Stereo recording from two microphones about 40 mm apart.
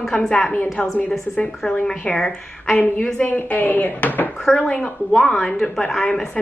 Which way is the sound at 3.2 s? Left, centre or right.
Left.